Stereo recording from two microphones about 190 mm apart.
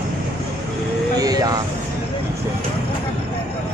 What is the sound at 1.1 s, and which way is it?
Vehicle, 20° right (ahead or behind).